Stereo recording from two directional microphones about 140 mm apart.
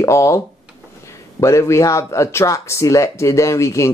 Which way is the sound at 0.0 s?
20° left (ahead or behind).